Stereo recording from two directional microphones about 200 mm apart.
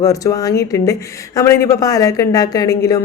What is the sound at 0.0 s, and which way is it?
Speech, 15° left (ahead or behind).